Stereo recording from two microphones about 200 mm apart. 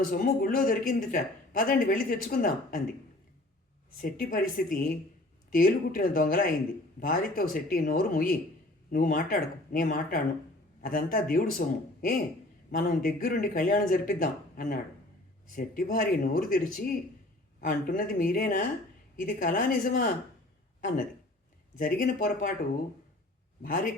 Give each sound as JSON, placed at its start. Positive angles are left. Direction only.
{"t": 0.0, "sound": "speech", "side_deg": 45}
{"t": 4.0, "sound": "speech", "side_deg": 45}
{"t": 23.6, "sound": "speech", "side_deg": 45}